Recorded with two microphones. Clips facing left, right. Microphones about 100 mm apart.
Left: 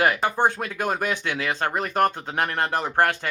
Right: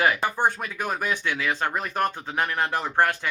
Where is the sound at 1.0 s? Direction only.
55° left (ahead or behind).